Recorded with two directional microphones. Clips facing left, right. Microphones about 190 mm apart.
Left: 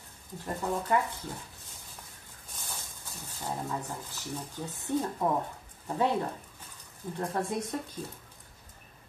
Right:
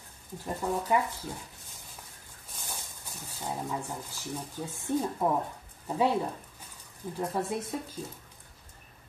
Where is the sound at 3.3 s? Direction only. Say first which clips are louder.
Right 1 dB; 10° right (ahead or behind).